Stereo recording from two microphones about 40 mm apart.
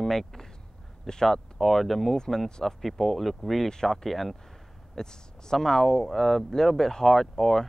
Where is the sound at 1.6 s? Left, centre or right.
Centre.